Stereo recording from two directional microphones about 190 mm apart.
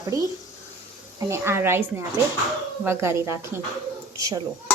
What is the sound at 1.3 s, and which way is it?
A woman's voice, 15° right (ahead or behind).